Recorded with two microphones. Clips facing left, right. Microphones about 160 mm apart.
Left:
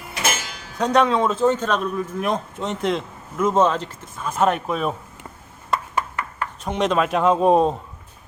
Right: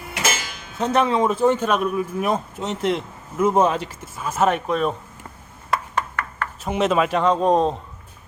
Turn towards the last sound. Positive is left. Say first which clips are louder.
# left 2 dB
turn(degrees=10)  # may be behind; listen again after turning